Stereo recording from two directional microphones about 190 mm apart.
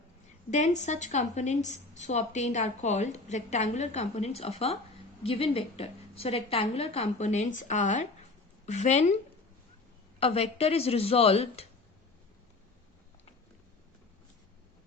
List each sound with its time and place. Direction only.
0.5 s a woman's voice: 40° left (ahead or behind)